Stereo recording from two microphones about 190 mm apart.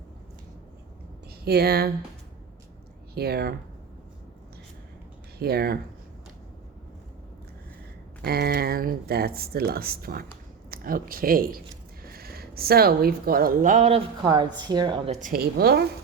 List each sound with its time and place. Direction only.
1.5 s speech: 55° right (ahead or behind)
3.2 s speech: 55° right (ahead or behind)
5.4 s speech: 55° right (ahead or behind)
8.2 s speech: 55° right (ahead or behind); by 14.0 s 40° right (ahead or behind)
14.2 s a woman's voice: 20° right (ahead or behind)
15.2 s speech: 50° right (ahead or behind)